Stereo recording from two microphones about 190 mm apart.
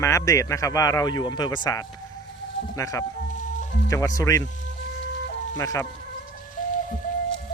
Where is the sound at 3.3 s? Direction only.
40° left (ahead or behind).